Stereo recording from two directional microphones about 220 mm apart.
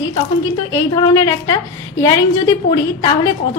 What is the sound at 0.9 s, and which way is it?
A woman's voice, 15° left (ahead or behind).